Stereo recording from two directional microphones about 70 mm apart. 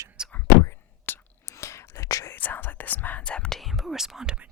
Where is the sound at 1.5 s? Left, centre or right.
Left.